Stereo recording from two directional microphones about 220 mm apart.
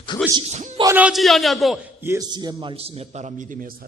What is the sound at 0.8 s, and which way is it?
A man's voice, 10° right (ahead or behind).